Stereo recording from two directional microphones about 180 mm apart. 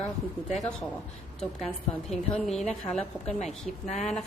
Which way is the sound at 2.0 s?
5° left (ahead or behind).